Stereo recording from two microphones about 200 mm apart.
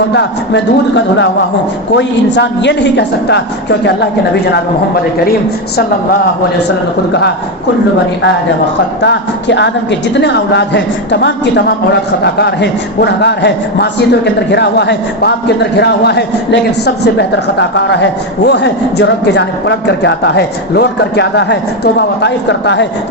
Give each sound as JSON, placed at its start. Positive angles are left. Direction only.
{"t": 0.1, "sound": "a man's voice", "side_deg": 60}
{"t": 9.0, "sound": "a man's voice", "side_deg": 60}